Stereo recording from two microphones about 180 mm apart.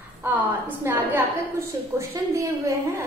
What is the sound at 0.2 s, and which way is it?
A woman's voice, 10° right (ahead or behind).